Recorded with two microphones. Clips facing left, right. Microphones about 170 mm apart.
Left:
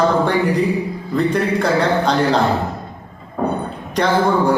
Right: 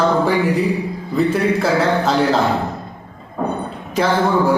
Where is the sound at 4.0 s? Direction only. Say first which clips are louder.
Even; 5° right (ahead or behind).